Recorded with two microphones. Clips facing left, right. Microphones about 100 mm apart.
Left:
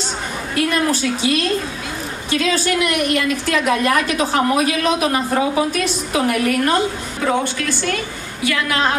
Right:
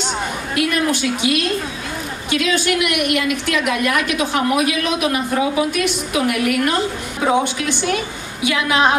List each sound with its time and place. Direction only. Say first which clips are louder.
0.6 s a woman's voice: left 1 dB; 35° left (ahead or behind)
7.2 s a woman's voice: right 2 dB; 15° right (ahead or behind)